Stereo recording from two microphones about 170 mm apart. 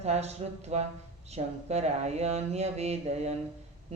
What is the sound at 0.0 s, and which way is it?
Speech, 40° right (ahead or behind).